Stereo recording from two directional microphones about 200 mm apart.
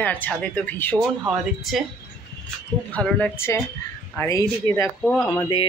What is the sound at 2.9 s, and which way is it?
Speech, 5° left (ahead or behind).